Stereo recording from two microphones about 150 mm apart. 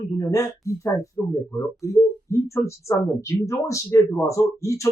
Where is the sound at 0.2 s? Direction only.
20° left (ahead or behind).